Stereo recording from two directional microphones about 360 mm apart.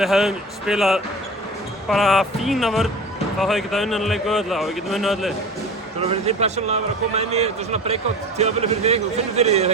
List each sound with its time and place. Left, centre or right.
0.0 s speech: centre
6.0 s a man's voice: centre